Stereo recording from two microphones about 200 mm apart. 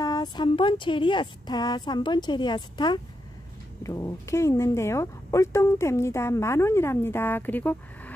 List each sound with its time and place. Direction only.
0.0 s speech: 20° left (ahead or behind)